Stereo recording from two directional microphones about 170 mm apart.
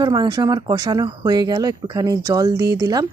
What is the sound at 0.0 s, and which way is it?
Speech, 25° right (ahead or behind).